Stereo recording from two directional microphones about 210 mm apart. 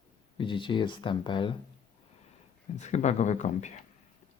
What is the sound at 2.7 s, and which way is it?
Speech, 35° left (ahead or behind).